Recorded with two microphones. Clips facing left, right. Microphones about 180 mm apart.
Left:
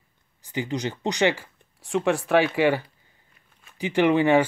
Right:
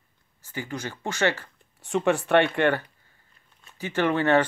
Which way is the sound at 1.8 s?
Centre (ahead or behind).